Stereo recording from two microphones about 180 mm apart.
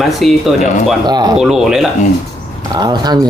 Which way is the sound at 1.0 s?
25° right (ahead or behind).